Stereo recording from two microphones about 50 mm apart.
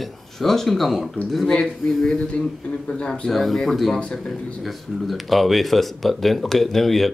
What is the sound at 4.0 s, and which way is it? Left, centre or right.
Speech, left.